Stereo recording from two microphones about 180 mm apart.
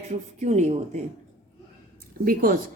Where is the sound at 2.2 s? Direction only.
50° right (ahead or behind).